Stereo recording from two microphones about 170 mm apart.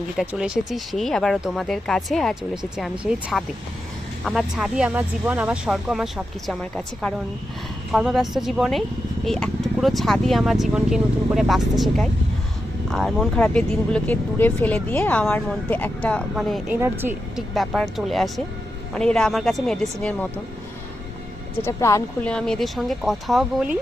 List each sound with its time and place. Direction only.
0.2 s speech: 5° right (ahead or behind)
16.7 s speech: 10° right (ahead or behind)
17.3 s speech: centre (ahead or behind)
21.6 s speech: 15° left (ahead or behind)
22.3 s speech: 5° left (ahead or behind)